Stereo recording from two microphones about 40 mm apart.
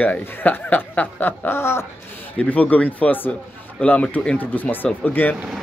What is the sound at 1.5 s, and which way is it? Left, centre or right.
Speech, left.